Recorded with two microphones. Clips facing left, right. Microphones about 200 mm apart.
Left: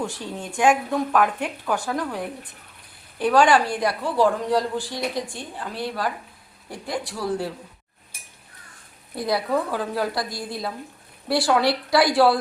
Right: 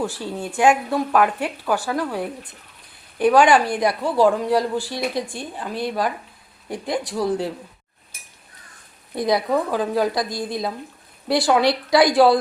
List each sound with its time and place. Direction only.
0.0 s speech: 5° right (ahead or behind)
9.1 s speech: 15° right (ahead or behind)